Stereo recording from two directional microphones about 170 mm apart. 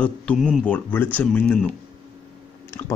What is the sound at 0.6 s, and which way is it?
Speech, 10° left (ahead or behind).